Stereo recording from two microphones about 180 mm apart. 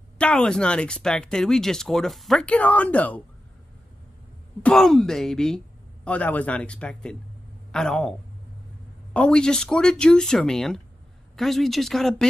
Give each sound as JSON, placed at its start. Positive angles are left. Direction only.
{"t": 0.2, "sound": "speech", "side_deg": 5}
{"t": 4.6, "sound": "speech", "side_deg": 0}
{"t": 9.1, "sound": "speech", "side_deg": 5}